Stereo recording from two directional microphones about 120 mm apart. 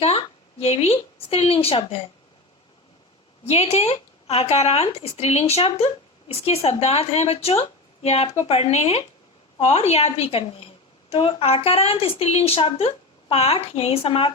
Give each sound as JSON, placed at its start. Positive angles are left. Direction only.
{"t": 0.0, "sound": "a woman's voice", "side_deg": 55}
{"t": 3.4, "sound": "speech", "side_deg": 60}